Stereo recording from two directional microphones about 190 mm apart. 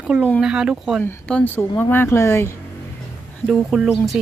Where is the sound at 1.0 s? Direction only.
10° left (ahead or behind).